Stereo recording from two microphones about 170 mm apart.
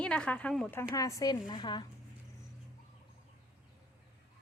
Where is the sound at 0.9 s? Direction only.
20° left (ahead or behind).